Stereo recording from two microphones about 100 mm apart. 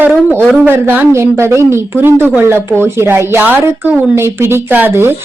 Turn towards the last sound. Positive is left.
turn(degrees=-20)  # may be behind; listen again after turning